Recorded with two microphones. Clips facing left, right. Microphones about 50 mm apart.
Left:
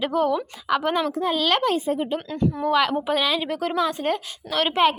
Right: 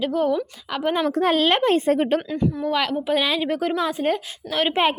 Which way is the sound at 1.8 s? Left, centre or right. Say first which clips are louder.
Right 5 dB; right.